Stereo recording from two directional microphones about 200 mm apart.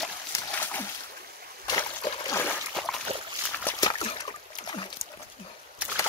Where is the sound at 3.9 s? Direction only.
25° left (ahead or behind).